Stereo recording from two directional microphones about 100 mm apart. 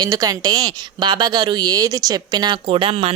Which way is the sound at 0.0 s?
40° right (ahead or behind).